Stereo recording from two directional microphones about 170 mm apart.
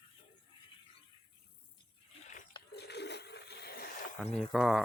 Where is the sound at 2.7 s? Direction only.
75° left (ahead or behind); by 4.2 s 55° left (ahead or behind).